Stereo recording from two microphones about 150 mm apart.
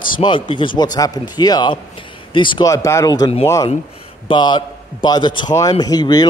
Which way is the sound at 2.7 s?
20° left (ahead or behind).